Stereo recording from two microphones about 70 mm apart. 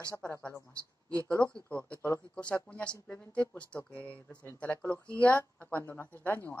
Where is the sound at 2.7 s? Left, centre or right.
Centre.